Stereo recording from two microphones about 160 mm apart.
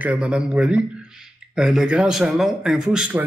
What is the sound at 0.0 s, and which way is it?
A man's voice, 10° right (ahead or behind).